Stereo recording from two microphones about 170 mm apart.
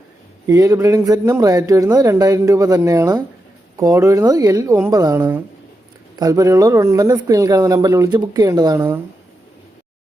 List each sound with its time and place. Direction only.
0.4 s speech: 20° right (ahead or behind)